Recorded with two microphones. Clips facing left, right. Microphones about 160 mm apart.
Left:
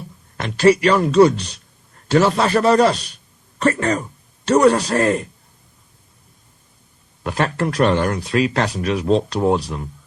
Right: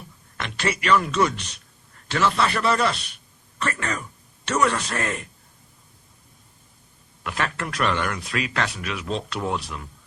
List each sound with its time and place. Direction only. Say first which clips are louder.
0.3 s speech: left 13 dB; 40° left (ahead or behind)
7.3 s speech: left 8 dB; 35° left (ahead or behind)